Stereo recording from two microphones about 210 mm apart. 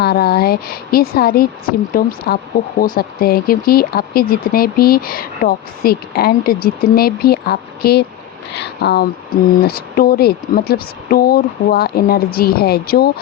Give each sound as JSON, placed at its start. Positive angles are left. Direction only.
{"t": 0.0, "sound": "speech", "side_deg": 50}